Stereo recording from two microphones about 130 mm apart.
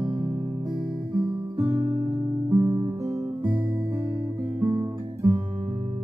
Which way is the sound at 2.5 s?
30° right (ahead or behind).